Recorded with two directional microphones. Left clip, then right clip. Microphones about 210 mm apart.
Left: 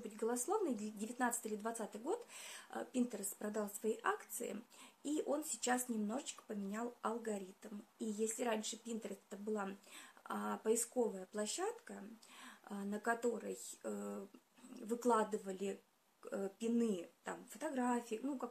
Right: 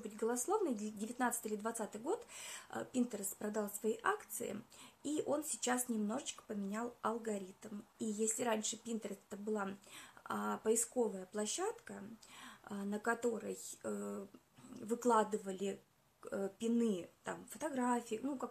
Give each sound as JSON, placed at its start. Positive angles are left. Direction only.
{"t": 0.0, "sound": "speech", "side_deg": -10}